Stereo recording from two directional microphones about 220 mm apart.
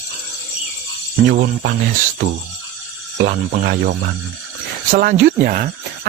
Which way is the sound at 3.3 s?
40° right (ahead or behind).